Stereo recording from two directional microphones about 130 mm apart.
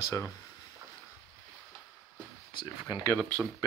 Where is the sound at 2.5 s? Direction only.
35° left (ahead or behind).